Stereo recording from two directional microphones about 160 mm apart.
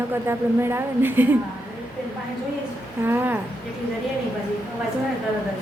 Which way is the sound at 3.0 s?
15° right (ahead or behind).